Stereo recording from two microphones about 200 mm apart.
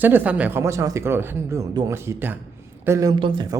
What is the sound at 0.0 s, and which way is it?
Speech, 10° right (ahead or behind).